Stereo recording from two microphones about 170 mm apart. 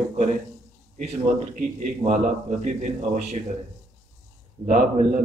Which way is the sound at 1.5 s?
45° right (ahead or behind).